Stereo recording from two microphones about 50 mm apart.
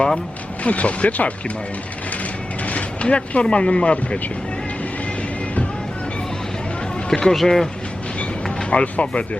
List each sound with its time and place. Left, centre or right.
0.6 s speech: left
2.6 s a sound: left
3.4 s speech: left
7.1 s speech: centre
8.7 s speech: left